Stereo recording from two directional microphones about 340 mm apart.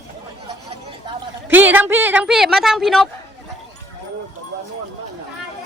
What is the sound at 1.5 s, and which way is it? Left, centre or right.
Speech, centre.